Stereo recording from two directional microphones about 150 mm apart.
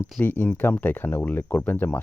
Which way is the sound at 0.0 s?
10° left (ahead or behind).